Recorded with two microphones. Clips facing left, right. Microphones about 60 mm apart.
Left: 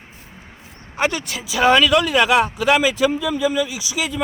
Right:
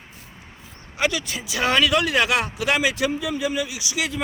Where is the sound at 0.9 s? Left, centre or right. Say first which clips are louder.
Left 2 dB; left.